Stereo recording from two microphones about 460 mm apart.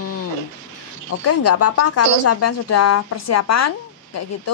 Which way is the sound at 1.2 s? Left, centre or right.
Left.